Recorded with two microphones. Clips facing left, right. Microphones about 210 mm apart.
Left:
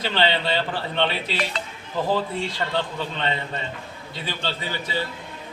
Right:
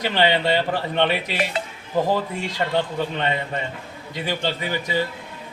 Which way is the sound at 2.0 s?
45° right (ahead or behind).